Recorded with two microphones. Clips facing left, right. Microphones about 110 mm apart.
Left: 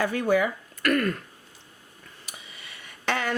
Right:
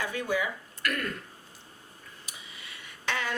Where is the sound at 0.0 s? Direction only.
50° left (ahead or behind).